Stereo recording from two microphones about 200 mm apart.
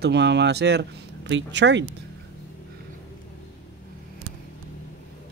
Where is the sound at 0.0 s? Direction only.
60° right (ahead or behind).